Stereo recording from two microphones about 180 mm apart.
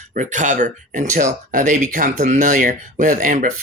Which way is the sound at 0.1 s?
45° right (ahead or behind).